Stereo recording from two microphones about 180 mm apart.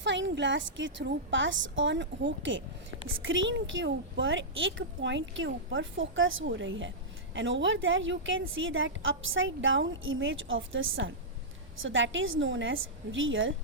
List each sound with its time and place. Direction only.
0.0 s a woman's voice: 85° right